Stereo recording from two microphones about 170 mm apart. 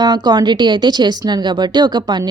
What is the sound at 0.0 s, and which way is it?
Speech, 25° right (ahead or behind).